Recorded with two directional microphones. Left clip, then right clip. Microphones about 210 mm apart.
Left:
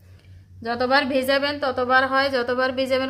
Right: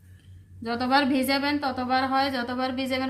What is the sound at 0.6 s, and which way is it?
A woman's voice, 50° left (ahead or behind).